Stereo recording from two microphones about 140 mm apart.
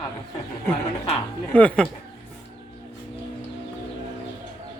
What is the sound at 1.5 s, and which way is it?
Speech, 10° left (ahead or behind).